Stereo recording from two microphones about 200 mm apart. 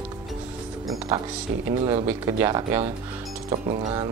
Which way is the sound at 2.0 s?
15° right (ahead or behind).